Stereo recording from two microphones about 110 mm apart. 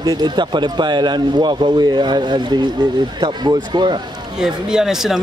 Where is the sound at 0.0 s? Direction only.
40° right (ahead or behind).